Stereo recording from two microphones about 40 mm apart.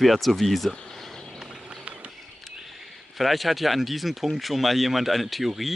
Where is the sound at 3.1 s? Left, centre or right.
Centre.